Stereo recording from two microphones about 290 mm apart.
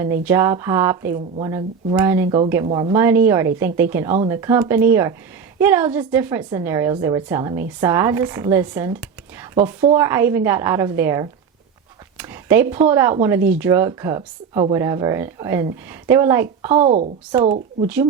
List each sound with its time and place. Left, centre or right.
0.0 s speech: centre
2.6 s a woman's voice: centre
2.9 s speech: centre
12.1 s a sound: centre
12.7 s speech: centre
16.7 s a woman's voice: right